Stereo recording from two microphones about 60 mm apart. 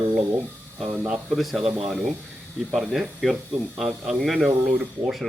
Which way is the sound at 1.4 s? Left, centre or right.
Centre.